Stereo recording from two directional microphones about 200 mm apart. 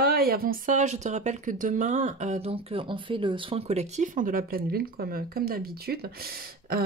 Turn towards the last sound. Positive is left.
turn(degrees=-50)  # may be behind; listen again after turning